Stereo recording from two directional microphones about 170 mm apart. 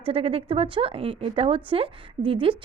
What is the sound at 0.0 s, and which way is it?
A woman's voice, 35° right (ahead or behind).